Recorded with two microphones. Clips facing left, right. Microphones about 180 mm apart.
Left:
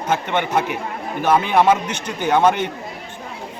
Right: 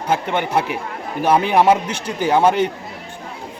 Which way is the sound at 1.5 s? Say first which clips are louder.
Right 2 dB; 10° right (ahead or behind).